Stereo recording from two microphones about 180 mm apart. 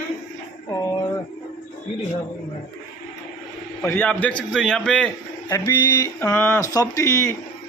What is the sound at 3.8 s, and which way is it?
Speech, 10° left (ahead or behind).